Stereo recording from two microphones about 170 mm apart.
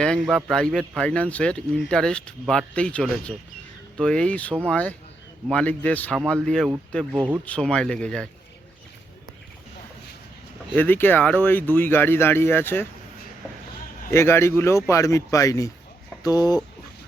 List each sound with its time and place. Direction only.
0.0 s speech: 5° left (ahead or behind)
10.8 s speech: 10° left (ahead or behind)
14.1 s speech: 15° left (ahead or behind)